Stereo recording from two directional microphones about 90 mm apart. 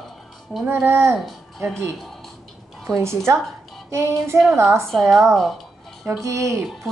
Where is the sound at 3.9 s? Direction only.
35° right (ahead or behind).